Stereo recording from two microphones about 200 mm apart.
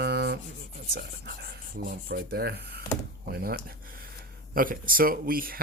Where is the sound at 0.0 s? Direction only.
55° right (ahead or behind).